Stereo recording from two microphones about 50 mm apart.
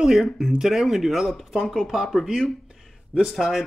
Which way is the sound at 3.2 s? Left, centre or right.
Centre.